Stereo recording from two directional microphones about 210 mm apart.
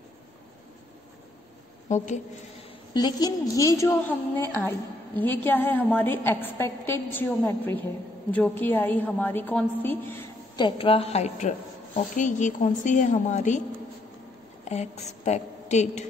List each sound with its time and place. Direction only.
2.9 s a woman's voice: 20° left (ahead or behind); by 13.6 s 35° left (ahead or behind)
14.6 s a woman's voice: 30° left (ahead or behind)